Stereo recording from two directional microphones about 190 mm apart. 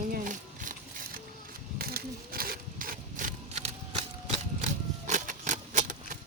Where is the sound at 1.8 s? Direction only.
50° right (ahead or behind).